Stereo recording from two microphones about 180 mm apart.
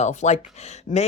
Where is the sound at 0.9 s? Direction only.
45° left (ahead or behind).